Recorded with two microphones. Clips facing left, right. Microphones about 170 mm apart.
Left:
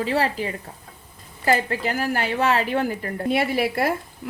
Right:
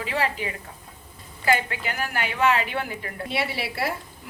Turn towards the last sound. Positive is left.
turn(degrees=50)  # may be behind; listen again after turning